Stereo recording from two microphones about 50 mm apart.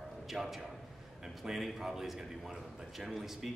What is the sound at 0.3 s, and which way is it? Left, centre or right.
A man's voice, centre.